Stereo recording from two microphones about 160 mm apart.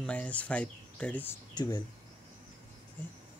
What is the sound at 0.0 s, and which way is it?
Speech, 10° left (ahead or behind).